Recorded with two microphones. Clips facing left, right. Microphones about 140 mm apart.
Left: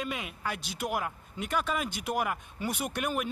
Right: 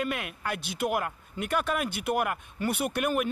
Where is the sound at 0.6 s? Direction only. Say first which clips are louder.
Right 5 dB; 60° right (ahead or behind).